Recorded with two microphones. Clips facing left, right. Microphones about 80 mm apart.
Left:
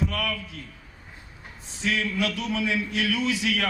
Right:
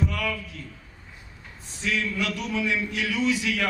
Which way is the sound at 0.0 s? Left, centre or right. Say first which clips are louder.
Even; right.